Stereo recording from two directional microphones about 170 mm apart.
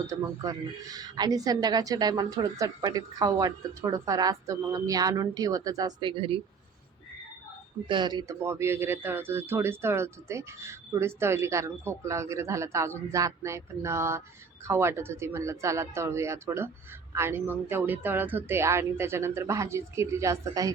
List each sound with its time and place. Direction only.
0.1 s a woman's voice: 20° right (ahead or behind)
7.9 s speech: 25° right (ahead or behind)